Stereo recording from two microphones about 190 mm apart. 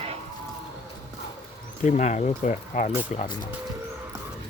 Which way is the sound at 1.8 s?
40° left (ahead or behind).